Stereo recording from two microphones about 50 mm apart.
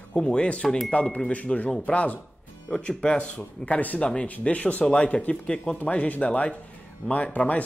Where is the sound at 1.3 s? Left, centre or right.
Left.